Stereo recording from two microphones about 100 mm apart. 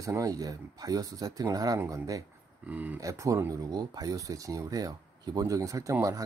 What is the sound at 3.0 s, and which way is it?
Speech, 35° right (ahead or behind).